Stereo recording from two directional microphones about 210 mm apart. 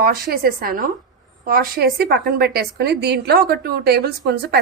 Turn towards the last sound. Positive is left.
turn(degrees=-50)  # may be behind; listen again after turning